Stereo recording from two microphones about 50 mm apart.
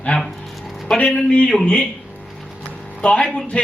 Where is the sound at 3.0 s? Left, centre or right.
Left.